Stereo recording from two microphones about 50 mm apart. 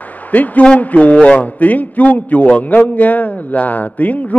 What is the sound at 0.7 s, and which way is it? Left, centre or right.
A man's voice, left.